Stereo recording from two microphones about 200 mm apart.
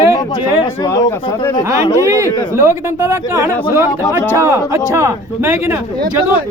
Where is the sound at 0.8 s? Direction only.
15° left (ahead or behind).